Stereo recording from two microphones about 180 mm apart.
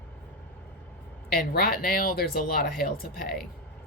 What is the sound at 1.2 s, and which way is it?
Speech, 55° left (ahead or behind).